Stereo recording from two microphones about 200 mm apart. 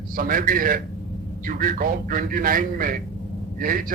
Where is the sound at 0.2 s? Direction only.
45° right (ahead or behind).